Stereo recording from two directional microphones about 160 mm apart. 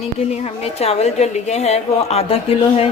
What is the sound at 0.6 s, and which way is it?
A woman's voice, 40° left (ahead or behind).